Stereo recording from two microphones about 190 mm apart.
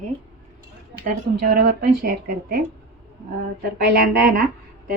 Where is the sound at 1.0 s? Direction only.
50° right (ahead or behind).